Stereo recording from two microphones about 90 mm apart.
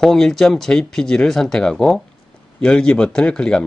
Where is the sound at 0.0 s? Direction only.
5° left (ahead or behind).